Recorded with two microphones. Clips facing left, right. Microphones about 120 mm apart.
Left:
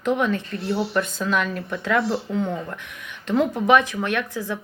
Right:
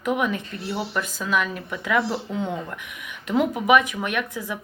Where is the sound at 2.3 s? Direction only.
15° right (ahead or behind).